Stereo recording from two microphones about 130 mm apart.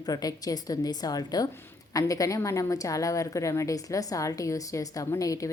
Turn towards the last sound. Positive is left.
turn(degrees=25)  # may be behind; listen again after turning